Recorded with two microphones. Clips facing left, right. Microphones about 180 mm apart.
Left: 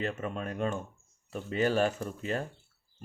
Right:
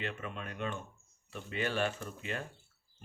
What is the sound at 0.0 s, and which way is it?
Speech, 40° left (ahead or behind).